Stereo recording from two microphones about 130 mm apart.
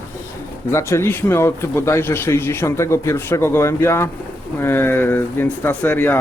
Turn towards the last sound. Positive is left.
turn(degrees=15)  # may be behind; listen again after turning